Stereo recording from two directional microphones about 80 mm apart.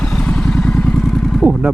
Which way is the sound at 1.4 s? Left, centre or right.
Right.